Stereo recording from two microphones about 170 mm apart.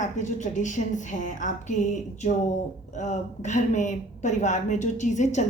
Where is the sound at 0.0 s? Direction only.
45° left (ahead or behind).